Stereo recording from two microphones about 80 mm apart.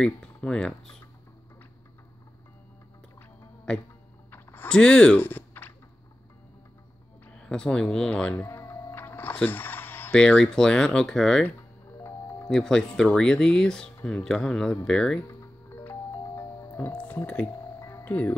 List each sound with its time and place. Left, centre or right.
0.0 s speech: centre
3.2 s music: centre
4.3 s a sound: left
4.6 s speech: centre
5.2 s a sound: left
7.4 s speech: centre
8.5 s music: left
10.1 s speech: centre
12.4 s speech: centre
16.7 s music: centre
17.7 s music: left
18.0 s speech: centre